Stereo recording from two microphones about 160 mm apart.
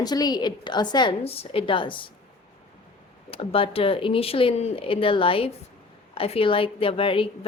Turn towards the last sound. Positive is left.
turn(degrees=35)  # may be behind; listen again after turning